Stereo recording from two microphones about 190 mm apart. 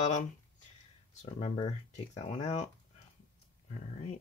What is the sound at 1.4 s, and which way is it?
Speech, 40° left (ahead or behind).